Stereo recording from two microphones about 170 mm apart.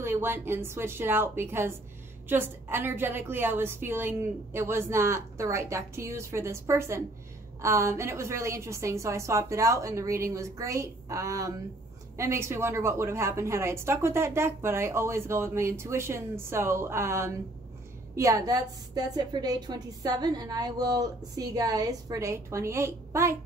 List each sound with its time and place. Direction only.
0.0 s a woman's voice: 15° right (ahead or behind)